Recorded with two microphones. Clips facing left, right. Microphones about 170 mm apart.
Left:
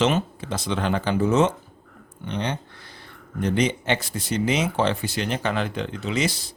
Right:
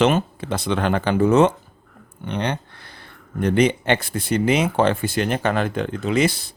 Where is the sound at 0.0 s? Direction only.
60° right (ahead or behind).